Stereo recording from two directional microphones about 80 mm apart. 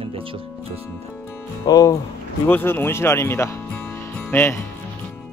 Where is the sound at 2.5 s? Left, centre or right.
Left.